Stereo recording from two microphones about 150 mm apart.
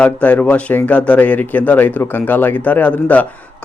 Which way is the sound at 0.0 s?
10° left (ahead or behind).